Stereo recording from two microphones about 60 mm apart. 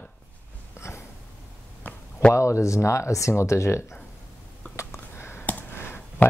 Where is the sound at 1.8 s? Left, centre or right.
Left.